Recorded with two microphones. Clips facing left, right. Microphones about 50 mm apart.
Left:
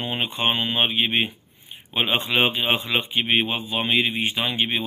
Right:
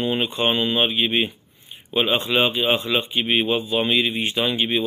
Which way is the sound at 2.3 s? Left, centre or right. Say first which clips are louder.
Right 2 dB; left.